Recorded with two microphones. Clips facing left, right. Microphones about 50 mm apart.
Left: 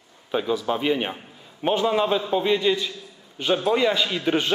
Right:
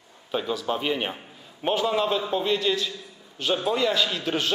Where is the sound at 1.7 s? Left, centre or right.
Centre.